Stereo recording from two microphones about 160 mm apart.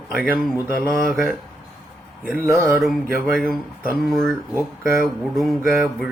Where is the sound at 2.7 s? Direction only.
Centre (ahead or behind).